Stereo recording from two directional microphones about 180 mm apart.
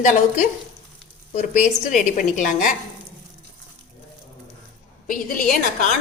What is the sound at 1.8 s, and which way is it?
Speech, 45° left (ahead or behind).